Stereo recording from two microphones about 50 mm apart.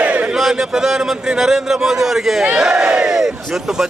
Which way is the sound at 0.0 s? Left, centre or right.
Right.